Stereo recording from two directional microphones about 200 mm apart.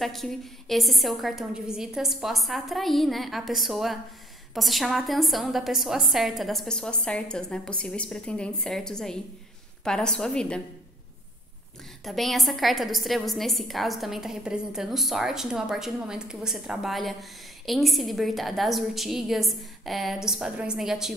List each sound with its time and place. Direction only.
0.0 s a woman's voice: centre (ahead or behind)
12.0 s a woman's voice: centre (ahead or behind)